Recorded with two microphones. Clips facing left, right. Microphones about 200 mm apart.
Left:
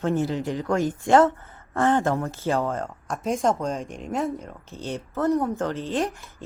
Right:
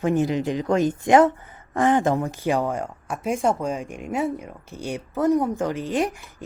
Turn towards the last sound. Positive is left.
turn(degrees=-15)  # may be behind; listen again after turning